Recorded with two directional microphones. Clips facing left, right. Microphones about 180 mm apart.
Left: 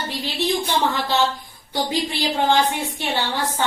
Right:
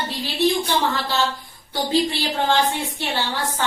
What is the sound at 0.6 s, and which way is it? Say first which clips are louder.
A woman's voice: left 1 dB; 20° left (ahead or behind).